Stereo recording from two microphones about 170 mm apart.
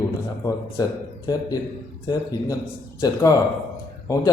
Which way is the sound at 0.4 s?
20° left (ahead or behind).